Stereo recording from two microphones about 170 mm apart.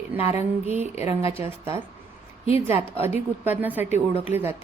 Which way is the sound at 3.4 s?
10° right (ahead or behind).